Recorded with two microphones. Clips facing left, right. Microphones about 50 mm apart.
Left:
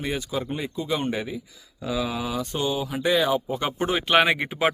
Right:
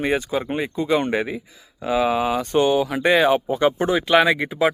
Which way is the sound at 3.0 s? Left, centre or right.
Right.